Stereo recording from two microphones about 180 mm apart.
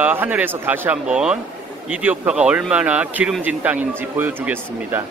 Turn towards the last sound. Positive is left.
turn(degrees=-10)  # may be behind; listen again after turning